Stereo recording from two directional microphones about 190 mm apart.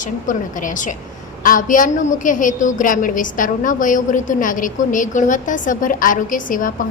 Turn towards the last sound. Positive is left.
turn(degrees=45)  # may be behind; listen again after turning